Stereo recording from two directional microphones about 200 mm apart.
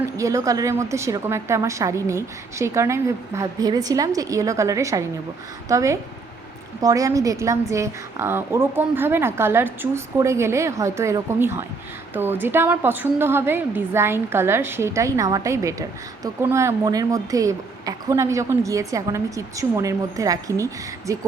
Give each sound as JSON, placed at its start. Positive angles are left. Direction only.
{"t": 0.2, "sound": "speech", "side_deg": -15}